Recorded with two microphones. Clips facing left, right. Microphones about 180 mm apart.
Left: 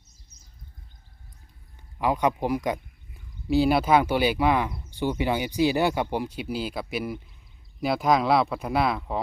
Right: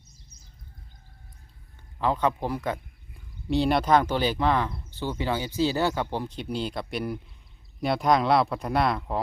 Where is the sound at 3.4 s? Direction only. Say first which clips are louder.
Left 2 dB; 5° left (ahead or behind).